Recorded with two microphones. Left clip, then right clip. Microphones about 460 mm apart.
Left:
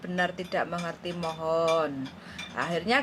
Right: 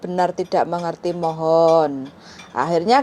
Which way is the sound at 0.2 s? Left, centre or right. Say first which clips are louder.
Right 10 dB; right.